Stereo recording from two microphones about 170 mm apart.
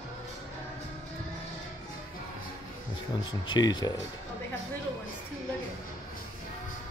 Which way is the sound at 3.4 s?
25° left (ahead or behind).